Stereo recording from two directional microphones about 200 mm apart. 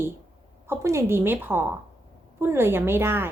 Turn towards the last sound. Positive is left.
turn(degrees=-10)  # may be behind; listen again after turning